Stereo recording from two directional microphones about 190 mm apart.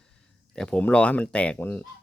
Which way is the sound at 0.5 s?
5° left (ahead or behind).